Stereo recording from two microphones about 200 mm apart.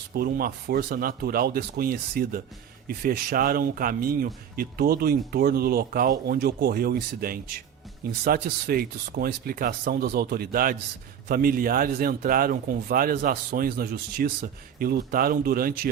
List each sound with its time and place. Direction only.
0.1 s speech: 45° right (ahead or behind)